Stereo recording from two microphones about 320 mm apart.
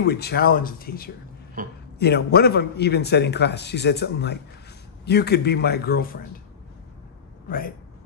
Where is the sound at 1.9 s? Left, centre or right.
Left.